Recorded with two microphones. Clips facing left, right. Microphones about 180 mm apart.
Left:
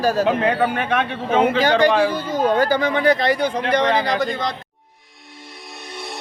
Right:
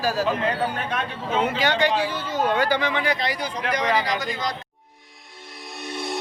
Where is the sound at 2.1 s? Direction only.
10° left (ahead or behind).